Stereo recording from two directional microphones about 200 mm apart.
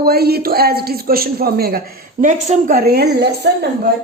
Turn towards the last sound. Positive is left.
turn(degrees=-55)  # may be behind; listen again after turning